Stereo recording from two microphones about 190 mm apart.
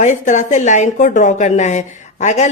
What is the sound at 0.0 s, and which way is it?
Speech, 40° left (ahead or behind).